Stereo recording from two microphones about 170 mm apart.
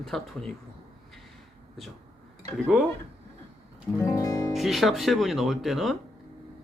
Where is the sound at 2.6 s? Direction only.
Centre (ahead or behind).